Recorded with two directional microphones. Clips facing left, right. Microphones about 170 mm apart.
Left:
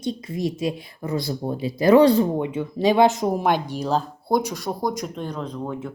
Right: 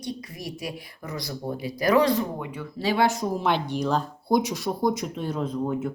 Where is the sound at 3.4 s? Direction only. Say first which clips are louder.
Left 2 dB; 45° left (ahead or behind).